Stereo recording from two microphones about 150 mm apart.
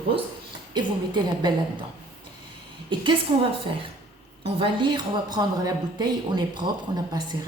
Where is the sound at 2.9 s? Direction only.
35° right (ahead or behind).